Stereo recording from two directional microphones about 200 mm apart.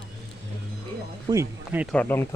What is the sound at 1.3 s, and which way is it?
Speech, 10° right (ahead or behind).